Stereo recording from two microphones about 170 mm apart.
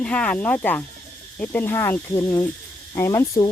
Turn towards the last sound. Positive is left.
turn(degrees=15)  # may be behind; listen again after turning